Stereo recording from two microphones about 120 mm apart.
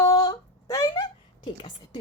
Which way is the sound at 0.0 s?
30° left (ahead or behind).